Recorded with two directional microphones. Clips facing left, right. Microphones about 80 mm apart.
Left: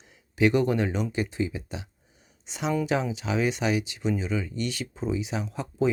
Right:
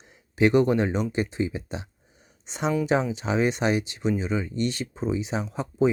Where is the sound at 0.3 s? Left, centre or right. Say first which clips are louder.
Right 3 dB; right.